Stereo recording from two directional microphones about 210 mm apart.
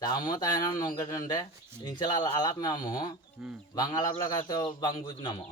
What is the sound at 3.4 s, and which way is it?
Speech, 5° right (ahead or behind).